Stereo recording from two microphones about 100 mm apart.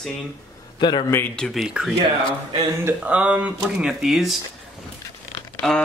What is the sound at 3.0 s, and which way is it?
Speech, 15° right (ahead or behind).